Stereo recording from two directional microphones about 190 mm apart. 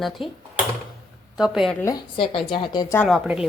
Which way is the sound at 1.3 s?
5° right (ahead or behind).